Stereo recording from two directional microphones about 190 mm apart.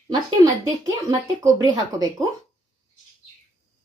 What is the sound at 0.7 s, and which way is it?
Speech, 15° right (ahead or behind).